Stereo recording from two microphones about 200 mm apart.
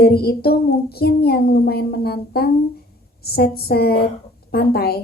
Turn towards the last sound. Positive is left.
turn(degrees=50)  # may be behind; listen again after turning